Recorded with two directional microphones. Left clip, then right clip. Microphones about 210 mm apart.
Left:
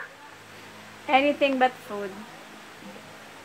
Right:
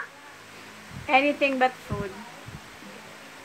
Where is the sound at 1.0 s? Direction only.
5° left (ahead or behind).